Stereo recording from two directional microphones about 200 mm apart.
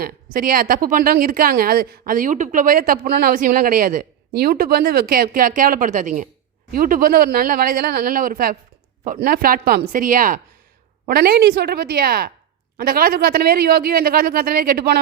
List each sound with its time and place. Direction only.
0.0 s a woman's voice: 45° right (ahead or behind)